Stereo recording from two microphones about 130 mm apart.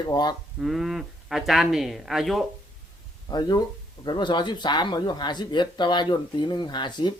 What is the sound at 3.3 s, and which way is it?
Speech, 30° left (ahead or behind).